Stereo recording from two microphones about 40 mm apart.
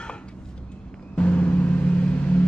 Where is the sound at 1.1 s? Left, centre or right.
Left.